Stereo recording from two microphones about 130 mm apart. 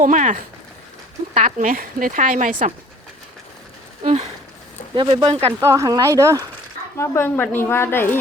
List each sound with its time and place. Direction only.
0.0 s speech: 75° right (ahead or behind)
4.0 s speech: 55° right (ahead or behind)
4.9 s speech: 40° right (ahead or behind)
5.5 s speech: 20° right (ahead or behind)
6.9 s a woman's voice: 20° left (ahead or behind)